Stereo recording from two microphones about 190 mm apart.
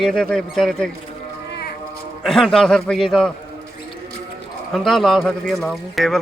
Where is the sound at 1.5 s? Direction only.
55° left (ahead or behind).